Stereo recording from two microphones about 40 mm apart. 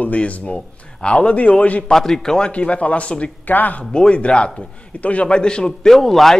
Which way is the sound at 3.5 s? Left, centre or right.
Left.